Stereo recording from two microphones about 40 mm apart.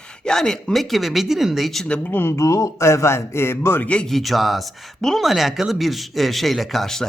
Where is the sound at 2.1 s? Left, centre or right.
Left.